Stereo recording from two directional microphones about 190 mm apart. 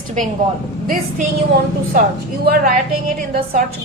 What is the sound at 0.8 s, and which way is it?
Speech, 45° right (ahead or behind).